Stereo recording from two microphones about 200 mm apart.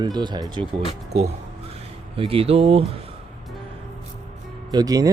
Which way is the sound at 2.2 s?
30° right (ahead or behind).